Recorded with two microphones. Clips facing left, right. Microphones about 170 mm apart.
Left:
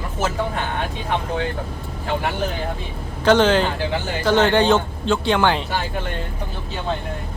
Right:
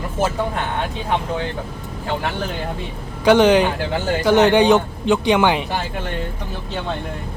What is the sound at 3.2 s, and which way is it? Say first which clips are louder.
Speech: right 3 dB; 15° right (ahead or behind).